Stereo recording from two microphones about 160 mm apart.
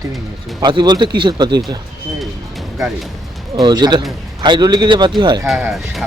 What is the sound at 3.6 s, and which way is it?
Speech, 25° right (ahead or behind).